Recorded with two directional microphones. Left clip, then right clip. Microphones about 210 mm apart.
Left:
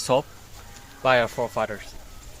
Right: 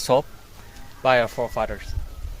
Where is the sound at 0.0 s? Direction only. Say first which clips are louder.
Right 2 dB; 15° right (ahead or behind).